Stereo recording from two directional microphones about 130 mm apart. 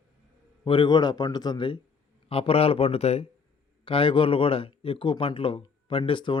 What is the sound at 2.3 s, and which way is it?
A man's voice, 45° left (ahead or behind).